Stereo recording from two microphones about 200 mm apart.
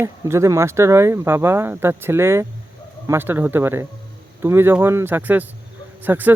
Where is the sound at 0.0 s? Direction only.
15° right (ahead or behind).